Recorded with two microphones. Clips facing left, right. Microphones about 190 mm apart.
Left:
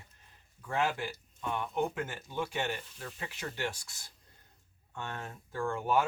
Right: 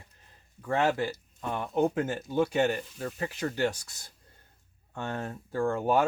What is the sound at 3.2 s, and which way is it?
Speech, 40° right (ahead or behind).